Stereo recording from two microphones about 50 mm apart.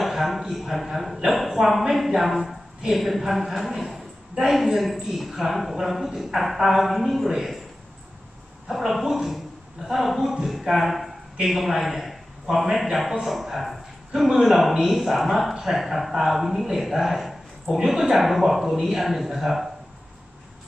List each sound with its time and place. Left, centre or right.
0.0 s speech: centre
8.6 s a woman's voice: centre